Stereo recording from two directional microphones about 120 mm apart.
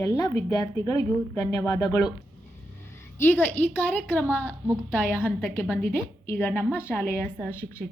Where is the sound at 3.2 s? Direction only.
15° left (ahead or behind).